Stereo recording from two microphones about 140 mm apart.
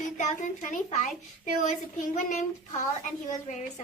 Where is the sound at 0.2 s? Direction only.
60° left (ahead or behind).